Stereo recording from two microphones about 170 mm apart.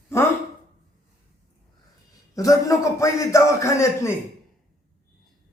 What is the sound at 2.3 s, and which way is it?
A man's voice, 20° left (ahead or behind).